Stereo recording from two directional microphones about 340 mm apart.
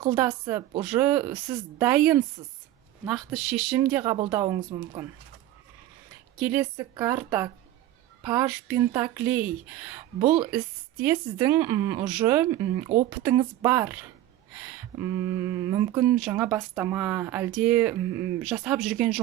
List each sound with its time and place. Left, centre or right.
0.0 s speech: centre
6.4 s speech: centre
14.6 s a sound: centre
15.7 s speech: centre